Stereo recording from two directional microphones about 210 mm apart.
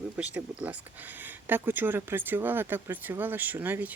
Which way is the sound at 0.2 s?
10° right (ahead or behind).